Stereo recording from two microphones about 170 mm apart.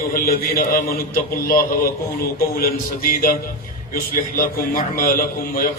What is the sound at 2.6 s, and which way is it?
Music, 55° left (ahead or behind).